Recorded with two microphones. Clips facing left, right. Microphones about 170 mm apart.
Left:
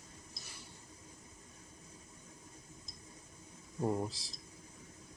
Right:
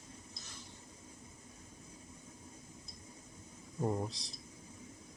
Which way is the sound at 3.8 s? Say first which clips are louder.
Left 1 dB; centre (ahead or behind).